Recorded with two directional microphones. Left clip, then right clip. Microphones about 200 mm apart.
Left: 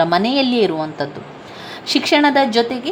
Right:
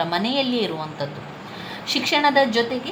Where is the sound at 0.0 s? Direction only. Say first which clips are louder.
Left 7 dB; 45° left (ahead or behind).